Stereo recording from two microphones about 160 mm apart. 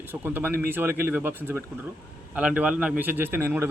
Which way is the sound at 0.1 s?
10° right (ahead or behind).